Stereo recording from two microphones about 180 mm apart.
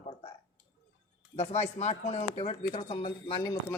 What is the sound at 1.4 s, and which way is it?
Speech, 35° left (ahead or behind).